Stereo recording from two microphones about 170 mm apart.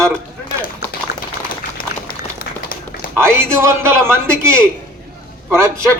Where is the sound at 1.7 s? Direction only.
60° left (ahead or behind).